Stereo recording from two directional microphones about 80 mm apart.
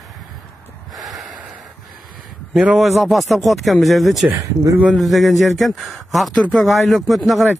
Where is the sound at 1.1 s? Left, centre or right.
Centre.